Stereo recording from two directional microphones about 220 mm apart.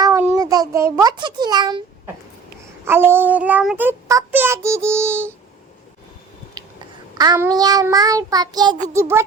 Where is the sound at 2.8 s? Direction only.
10° right (ahead or behind).